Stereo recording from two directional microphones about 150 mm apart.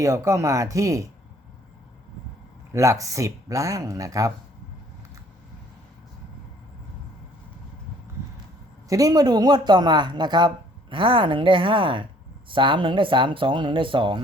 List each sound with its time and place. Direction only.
0.0 s speech: 20° right (ahead or behind)
2.7 s speech: 20° right (ahead or behind)
8.9 s speech: 25° right (ahead or behind)